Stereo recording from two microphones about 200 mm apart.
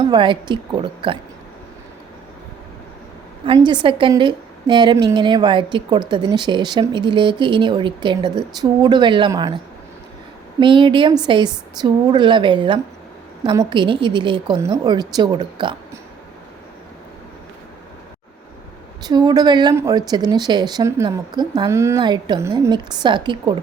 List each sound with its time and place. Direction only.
0.0 s a woman's voice: 25° right (ahead or behind)
3.4 s a woman's voice: 25° right (ahead or behind)
10.6 s a woman's voice: 25° right (ahead or behind)
19.0 s a woman's voice: 20° right (ahead or behind)